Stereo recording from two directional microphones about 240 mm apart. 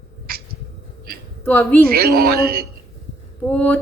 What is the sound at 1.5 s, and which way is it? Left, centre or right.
Speech, centre.